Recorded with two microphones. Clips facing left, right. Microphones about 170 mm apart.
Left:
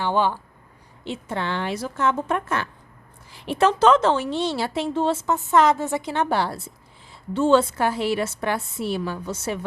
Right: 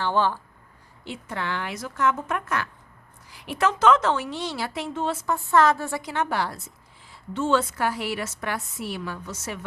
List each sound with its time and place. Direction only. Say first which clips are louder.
0.0 s speech: left 2 dB; 15° left (ahead or behind)
1.0 s a woman's voice: left 4 dB; 25° left (ahead or behind)